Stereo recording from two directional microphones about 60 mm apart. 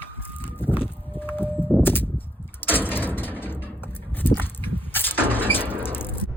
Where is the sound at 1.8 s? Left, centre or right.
Left.